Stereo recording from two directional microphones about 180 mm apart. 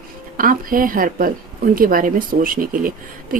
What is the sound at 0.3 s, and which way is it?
A woman's voice, 50° right (ahead or behind).